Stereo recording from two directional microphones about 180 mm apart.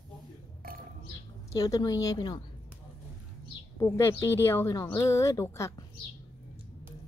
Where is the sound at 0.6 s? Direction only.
55° right (ahead or behind).